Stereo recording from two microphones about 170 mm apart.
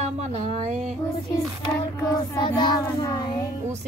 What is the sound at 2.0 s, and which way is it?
Child singing, 25° left (ahead or behind).